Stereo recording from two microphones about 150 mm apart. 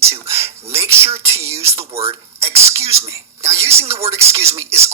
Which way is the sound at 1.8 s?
45° right (ahead or behind).